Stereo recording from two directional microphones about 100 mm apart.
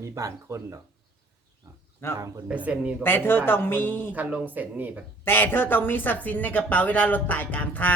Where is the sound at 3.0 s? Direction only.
20° left (ahead or behind).